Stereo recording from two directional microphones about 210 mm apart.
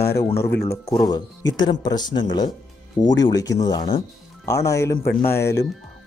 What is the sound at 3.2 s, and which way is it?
Speech, 15° left (ahead or behind).